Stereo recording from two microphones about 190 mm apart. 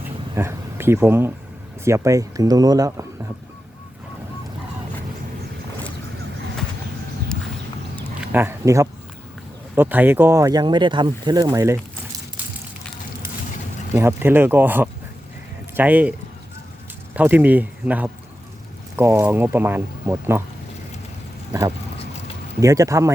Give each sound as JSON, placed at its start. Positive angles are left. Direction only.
{"t": 0.3, "sound": "speech", "side_deg": -15}
{"t": 8.2, "sound": "speech", "side_deg": -10}
{"t": 13.9, "sound": "speech", "side_deg": -10}
{"t": 17.2, "sound": "speech", "side_deg": -10}
{"t": 22.6, "sound": "speech", "side_deg": -15}